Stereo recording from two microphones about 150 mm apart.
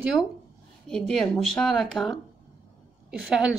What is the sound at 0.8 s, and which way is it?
Speech, 5° left (ahead or behind).